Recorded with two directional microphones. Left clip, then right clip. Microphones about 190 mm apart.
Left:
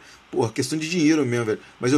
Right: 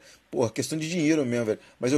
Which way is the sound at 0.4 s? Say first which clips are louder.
Left 3 dB; 20° right (ahead or behind).